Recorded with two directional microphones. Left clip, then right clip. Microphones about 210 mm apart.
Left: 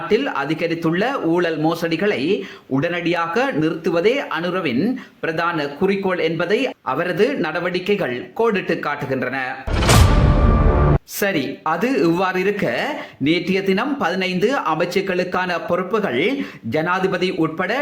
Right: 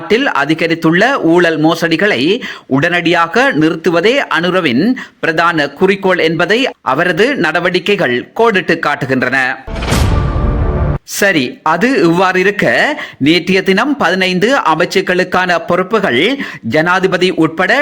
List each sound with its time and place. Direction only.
0.1 s a man's voice: 40° right (ahead or behind)
11.2 s a man's voice: 35° right (ahead or behind)